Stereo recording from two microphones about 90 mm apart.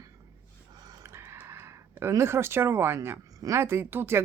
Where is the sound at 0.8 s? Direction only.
45° right (ahead or behind).